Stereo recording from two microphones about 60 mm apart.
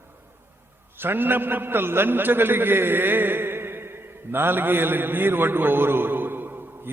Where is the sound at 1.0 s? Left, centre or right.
Right.